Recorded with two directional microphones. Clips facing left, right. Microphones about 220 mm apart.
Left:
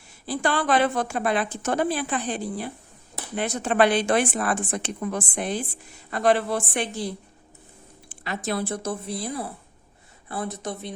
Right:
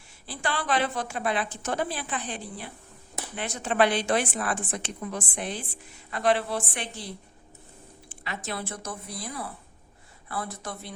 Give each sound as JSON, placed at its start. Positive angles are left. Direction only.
{"t": 0.3, "sound": "a woman's voice", "side_deg": 45}
{"t": 8.2, "sound": "speech", "side_deg": 40}